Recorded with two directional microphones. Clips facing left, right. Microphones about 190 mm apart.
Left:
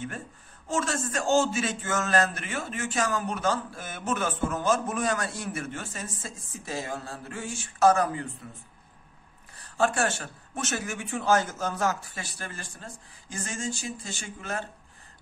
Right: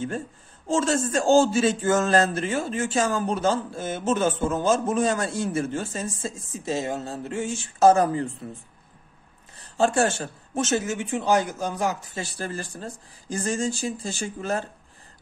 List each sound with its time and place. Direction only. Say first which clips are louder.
0.7 s a man's voice: right 6 dB; 30° right (ahead or behind)
9.8 s a man's voice: right 4 dB; 25° right (ahead or behind)
12.2 s speech: right 8 dB; 35° right (ahead or behind)